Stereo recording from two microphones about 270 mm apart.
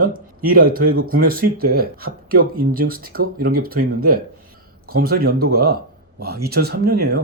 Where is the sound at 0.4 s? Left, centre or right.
Right.